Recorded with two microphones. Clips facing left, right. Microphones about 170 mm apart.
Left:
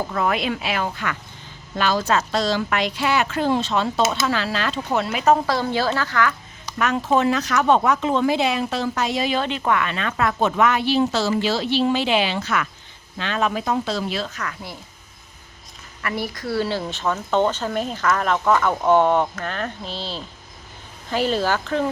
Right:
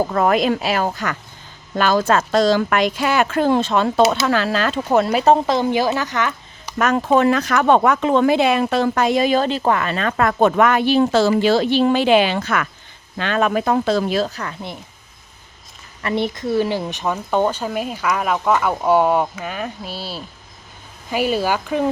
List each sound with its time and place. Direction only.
0.1 s speech: 45° right (ahead or behind)
5.5 s speech: 20° right (ahead or behind)
6.7 s speech: 50° right (ahead or behind); by 14.5 s 35° right (ahead or behind)
16.0 s speech: 25° right (ahead or behind)